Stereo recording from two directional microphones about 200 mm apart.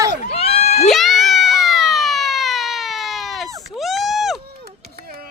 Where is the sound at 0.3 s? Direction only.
30° left (ahead or behind).